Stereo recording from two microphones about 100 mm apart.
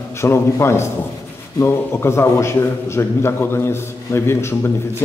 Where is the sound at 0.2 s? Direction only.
25° left (ahead or behind).